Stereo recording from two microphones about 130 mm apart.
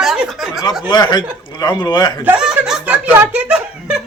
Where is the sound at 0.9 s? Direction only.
35° left (ahead or behind).